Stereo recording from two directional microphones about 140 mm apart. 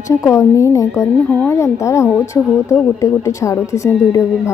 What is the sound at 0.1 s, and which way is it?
Speech, 20° left (ahead or behind).